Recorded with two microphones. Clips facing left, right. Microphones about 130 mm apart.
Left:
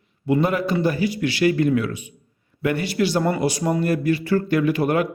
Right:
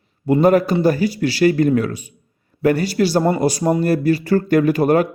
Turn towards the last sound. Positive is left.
turn(degrees=-40)  # may be behind; listen again after turning